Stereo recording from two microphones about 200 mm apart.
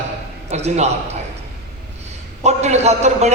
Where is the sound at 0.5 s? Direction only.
35° right (ahead or behind).